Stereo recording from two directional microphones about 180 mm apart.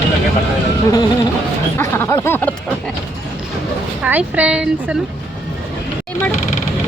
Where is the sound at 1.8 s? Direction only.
15° left (ahead or behind).